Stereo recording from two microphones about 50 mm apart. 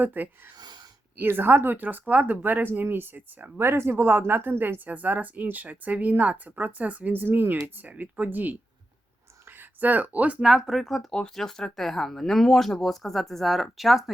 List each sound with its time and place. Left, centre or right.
0.0 s speech: right
3.6 s speech: right
4.9 s speech: right
7.1 s speech: right
9.6 s speech: right
10.4 s speech: centre
11.1 s speech: centre